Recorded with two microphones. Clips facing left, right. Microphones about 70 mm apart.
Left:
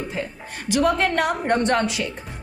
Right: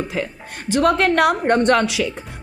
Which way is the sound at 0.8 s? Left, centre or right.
Right.